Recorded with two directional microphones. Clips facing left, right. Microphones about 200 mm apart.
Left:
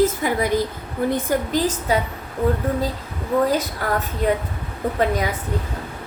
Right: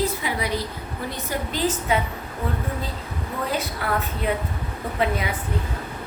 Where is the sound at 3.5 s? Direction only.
40° left (ahead or behind).